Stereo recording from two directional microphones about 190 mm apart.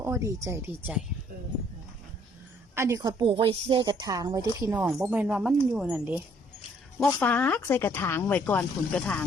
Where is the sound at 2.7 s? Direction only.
15° right (ahead or behind).